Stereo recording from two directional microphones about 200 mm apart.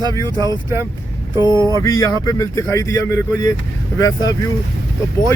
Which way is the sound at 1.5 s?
20° right (ahead or behind).